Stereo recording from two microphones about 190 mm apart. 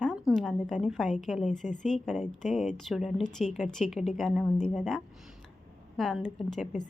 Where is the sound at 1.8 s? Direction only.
5° left (ahead or behind).